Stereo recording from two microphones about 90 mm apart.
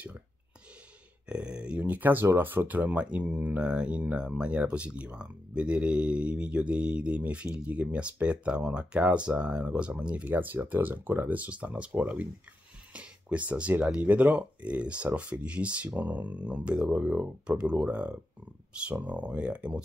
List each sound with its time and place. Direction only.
1.2 s speech: 10° right (ahead or behind)